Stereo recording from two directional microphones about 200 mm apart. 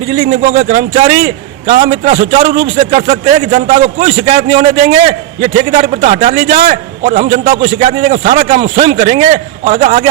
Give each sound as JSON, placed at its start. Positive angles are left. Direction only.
{"t": 0.2, "sound": "a man's voice", "side_deg": -35}